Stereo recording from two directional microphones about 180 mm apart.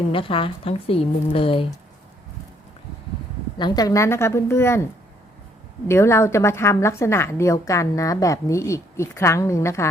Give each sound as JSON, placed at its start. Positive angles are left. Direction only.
{"t": 0.1, "sound": "a woman's voice", "side_deg": 30}
{"t": 3.6, "sound": "a woman's voice", "side_deg": 20}
{"t": 5.9, "sound": "a woman's voice", "side_deg": 15}